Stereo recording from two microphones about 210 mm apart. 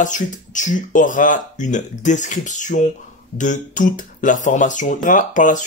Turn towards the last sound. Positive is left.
turn(degrees=35)  # may be behind; listen again after turning